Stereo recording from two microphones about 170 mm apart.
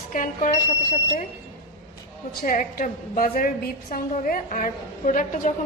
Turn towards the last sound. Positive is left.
turn(degrees=50)  # may be behind; listen again after turning